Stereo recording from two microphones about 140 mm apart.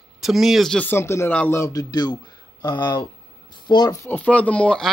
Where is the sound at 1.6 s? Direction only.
25° left (ahead or behind).